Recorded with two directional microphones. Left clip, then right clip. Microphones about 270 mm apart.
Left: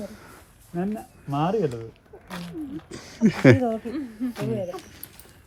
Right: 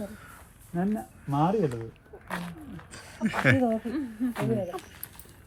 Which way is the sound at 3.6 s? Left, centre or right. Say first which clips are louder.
Left 1 dB; centre.